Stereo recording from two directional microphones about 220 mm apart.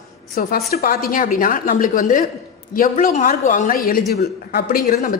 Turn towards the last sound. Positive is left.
turn(degrees=40)  # may be behind; listen again after turning